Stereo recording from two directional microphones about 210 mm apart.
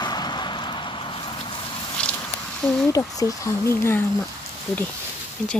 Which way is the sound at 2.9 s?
15° left (ahead or behind).